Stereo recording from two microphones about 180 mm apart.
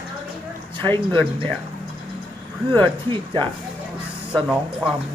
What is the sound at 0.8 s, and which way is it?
Speech, 10° left (ahead or behind).